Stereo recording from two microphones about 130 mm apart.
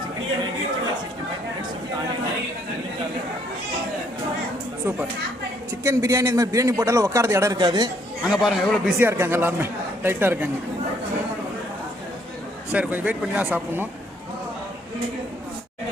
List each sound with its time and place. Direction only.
5.8 s a man's voice: 25° right (ahead or behind)
8.2 s speech: 5° right (ahead or behind)
9.0 s speech: 15° right (ahead or behind)
12.7 s speech: 10° right (ahead or behind)